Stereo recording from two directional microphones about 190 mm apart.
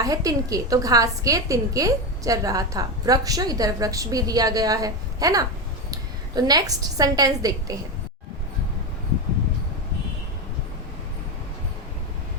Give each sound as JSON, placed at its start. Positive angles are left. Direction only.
{"t": 0.0, "sound": "a woman's voice", "side_deg": -20}